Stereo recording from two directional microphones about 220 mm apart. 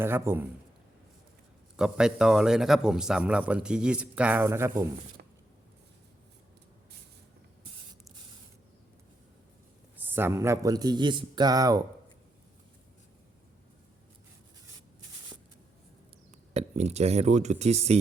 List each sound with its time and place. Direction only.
0.0 s speech: 10° right (ahead or behind)
1.7 s a man's voice: 5° right (ahead or behind)
5.2 s a sound: 50° right (ahead or behind)
10.0 s speech: 10° right (ahead or behind)
16.6 s speech: 30° right (ahead or behind)